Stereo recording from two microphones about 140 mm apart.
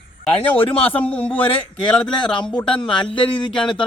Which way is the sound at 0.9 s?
10° left (ahead or behind).